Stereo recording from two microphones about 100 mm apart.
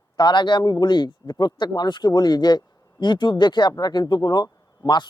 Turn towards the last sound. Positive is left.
turn(degrees=45)  # may be behind; listen again after turning